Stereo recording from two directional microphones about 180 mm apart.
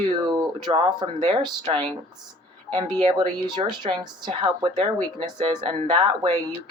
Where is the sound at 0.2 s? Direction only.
20° right (ahead or behind).